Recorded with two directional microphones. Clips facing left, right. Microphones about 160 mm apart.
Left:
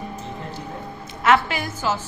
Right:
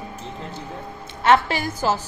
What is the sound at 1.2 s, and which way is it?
Speech, 35° right (ahead or behind).